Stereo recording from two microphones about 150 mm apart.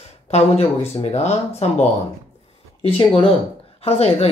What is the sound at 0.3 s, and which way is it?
Speech, 45° left (ahead or behind).